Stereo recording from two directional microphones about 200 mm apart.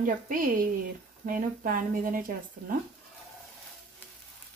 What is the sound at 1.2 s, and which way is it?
A woman's voice, 45° right (ahead or behind).